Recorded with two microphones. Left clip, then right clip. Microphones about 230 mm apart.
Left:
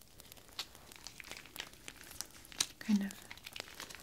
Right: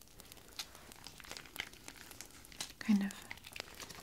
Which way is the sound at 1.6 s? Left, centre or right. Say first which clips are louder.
Right 2 dB; centre.